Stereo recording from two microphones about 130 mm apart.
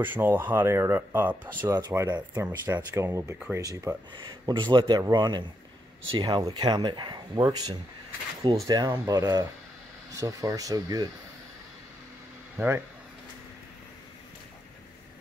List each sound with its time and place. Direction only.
0.0 s speech: 15° right (ahead or behind)
4.1 s speech: 35° right (ahead or behind)
12.5 s speech: 15° right (ahead or behind)